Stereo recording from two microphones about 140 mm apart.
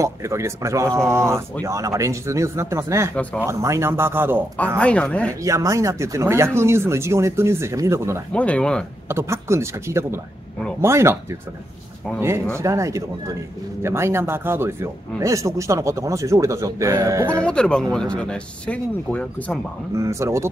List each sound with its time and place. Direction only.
0.0 s speech: 20° right (ahead or behind)
4.7 s speech: 10° left (ahead or behind)
5.4 s speech: 20° right (ahead or behind)
8.3 s speech: 10° left (ahead or behind)
9.1 s speech: 20° right (ahead or behind)
12.5 s speech: 20° right (ahead or behind)
17.5 s speech: 5° left (ahead or behind)
20.0 s speech: 20° right (ahead or behind)